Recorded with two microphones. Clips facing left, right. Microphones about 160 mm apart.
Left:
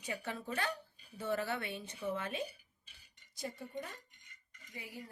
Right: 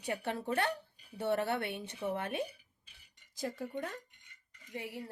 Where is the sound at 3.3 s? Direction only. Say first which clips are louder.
Right 5 dB; 90° right; by 3.9 s 65° right (ahead or behind).